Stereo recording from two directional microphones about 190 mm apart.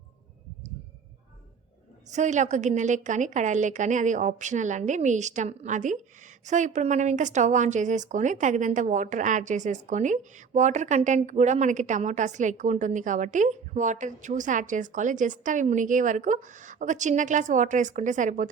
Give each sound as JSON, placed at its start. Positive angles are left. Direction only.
{"t": 2.1, "sound": "speech", "side_deg": -40}